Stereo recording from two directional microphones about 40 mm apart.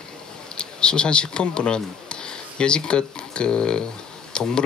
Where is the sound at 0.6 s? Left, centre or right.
Left.